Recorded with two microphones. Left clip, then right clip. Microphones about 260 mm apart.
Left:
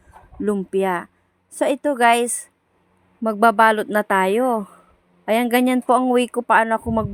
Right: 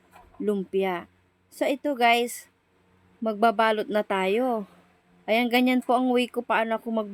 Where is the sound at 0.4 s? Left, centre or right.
Centre.